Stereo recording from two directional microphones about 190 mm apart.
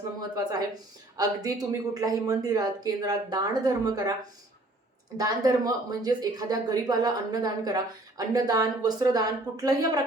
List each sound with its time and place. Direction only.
0.3 s speech: 20° right (ahead or behind)
5.1 s speech: 20° right (ahead or behind)